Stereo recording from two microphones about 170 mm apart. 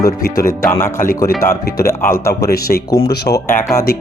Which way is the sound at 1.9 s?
15° left (ahead or behind).